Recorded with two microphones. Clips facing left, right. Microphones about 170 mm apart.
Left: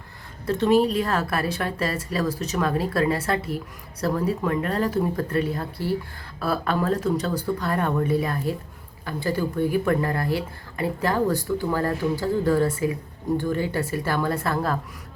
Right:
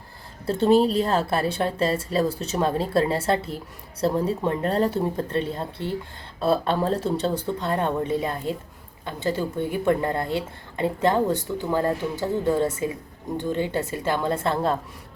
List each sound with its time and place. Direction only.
0.4 s speech: 30° right (ahead or behind)